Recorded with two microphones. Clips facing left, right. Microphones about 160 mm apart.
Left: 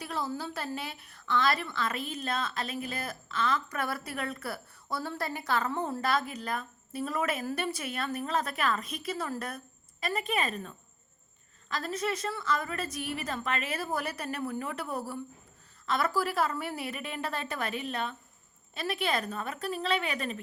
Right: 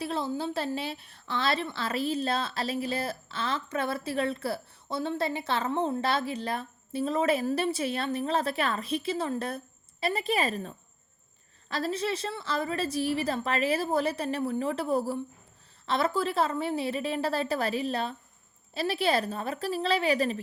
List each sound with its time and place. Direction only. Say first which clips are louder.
0.0 s a woman's voice: right 4 dB; 25° right (ahead or behind)